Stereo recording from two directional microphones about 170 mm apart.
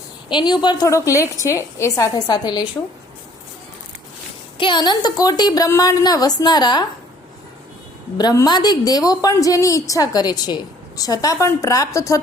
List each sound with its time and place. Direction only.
0.3 s a woman's voice: 25° left (ahead or behind)
4.5 s a woman's voice: 30° left (ahead or behind)
8.2 s a woman's voice: 20° left (ahead or behind)